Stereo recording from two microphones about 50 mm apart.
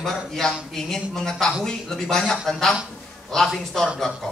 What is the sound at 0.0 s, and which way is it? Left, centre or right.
A man's voice, centre.